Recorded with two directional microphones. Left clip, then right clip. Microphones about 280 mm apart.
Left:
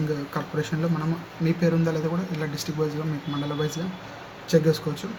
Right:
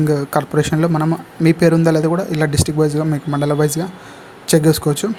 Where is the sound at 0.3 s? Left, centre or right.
Right.